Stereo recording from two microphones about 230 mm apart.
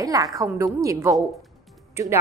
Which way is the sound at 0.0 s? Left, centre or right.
Centre.